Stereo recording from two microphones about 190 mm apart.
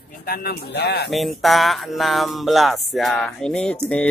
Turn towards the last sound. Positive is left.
turn(degrees=5)  # may be behind; listen again after turning